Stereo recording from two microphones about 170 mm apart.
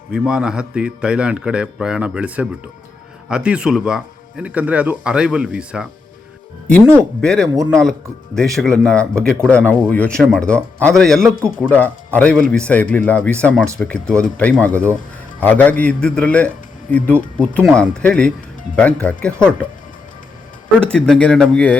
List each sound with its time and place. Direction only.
0.1 s speech: 5° right (ahead or behind)
7.2 s speech: 5° left (ahead or behind)
7.5 s speech: 20° right (ahead or behind)
8.4 s speech: centre (ahead or behind)
20.8 s speech: 5° left (ahead or behind)